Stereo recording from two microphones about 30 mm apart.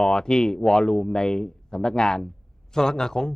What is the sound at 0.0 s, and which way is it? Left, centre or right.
Speech, left.